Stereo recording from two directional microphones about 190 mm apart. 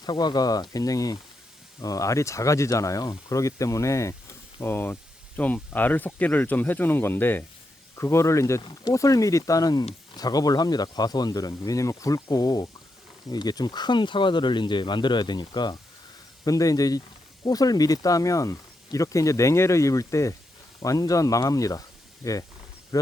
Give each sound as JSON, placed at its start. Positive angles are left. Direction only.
{"t": 0.0, "sound": "speech", "side_deg": 20}